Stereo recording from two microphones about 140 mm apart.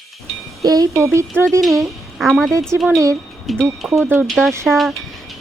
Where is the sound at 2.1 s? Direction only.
Centre (ahead or behind).